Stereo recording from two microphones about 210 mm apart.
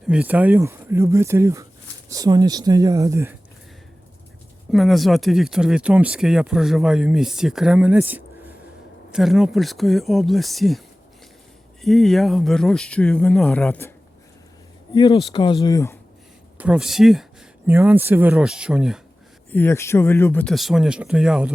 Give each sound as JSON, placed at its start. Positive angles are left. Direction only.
{"t": 0.1, "sound": "speech", "side_deg": -5}
{"t": 4.7, "sound": "speech", "side_deg": 0}
{"t": 14.9, "sound": "speech", "side_deg": 20}
{"t": 16.6, "sound": "speech", "side_deg": -5}
{"t": 19.5, "sound": "speech", "side_deg": 10}